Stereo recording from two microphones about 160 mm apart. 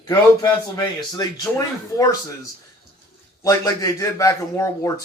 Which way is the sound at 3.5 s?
20° left (ahead or behind).